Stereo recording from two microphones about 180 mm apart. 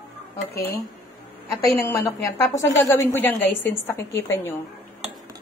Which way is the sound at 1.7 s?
15° left (ahead or behind).